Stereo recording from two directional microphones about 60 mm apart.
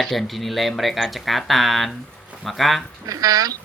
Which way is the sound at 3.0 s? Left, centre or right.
Right.